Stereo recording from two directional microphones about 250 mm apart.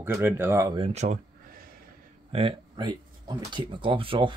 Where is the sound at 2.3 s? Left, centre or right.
Right.